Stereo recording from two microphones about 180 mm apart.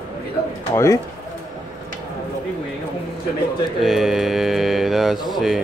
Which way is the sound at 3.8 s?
Centre (ahead or behind).